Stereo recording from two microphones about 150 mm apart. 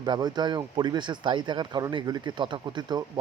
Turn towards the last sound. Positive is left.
turn(degrees=-30)  # may be behind; listen again after turning